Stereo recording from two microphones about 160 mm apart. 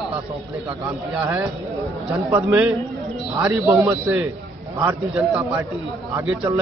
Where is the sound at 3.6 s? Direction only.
10° right (ahead or behind).